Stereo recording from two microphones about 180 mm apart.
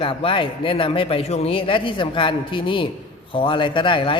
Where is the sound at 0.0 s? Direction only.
30° left (ahead or behind).